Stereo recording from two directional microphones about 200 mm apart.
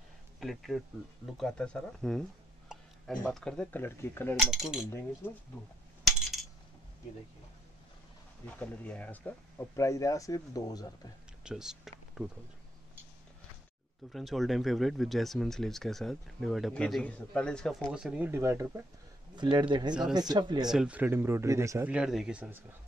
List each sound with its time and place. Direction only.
0.4 s speech: centre (ahead or behind)
4.4 s speech: centre (ahead or behind)
4.8 s speech: 10° left (ahead or behind)
8.5 s speech: 5° left (ahead or behind)
11.4 s speech: 5° right (ahead or behind)
14.1 s speech: centre (ahead or behind)
19.7 s speech: 20° right (ahead or behind)
20.7 s speech: 5° right (ahead or behind)